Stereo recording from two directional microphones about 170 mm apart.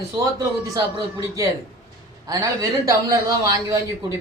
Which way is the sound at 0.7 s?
20° right (ahead or behind).